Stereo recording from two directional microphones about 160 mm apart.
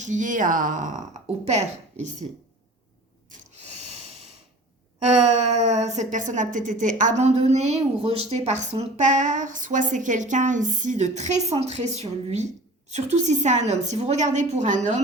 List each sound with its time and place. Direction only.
0.0 s speech: 50° right (ahead or behind)
3.2 s a sound: 50° right (ahead or behind)
5.0 s speech: 45° right (ahead or behind)